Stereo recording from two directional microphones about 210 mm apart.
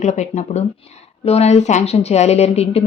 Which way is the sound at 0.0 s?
35° left (ahead or behind).